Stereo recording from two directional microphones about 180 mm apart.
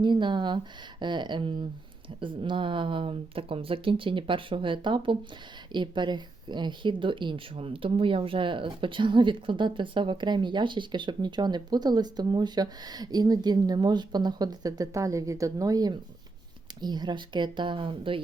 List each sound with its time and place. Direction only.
0.0 s speech: 25° right (ahead or behind)